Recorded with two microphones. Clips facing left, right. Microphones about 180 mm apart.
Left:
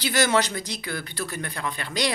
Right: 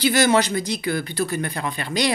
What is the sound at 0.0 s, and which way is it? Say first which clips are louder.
Speech: right 5 dB; 10° right (ahead or behind).